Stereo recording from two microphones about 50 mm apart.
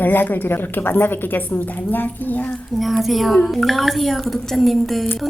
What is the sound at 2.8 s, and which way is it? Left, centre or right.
A woman's voice, centre.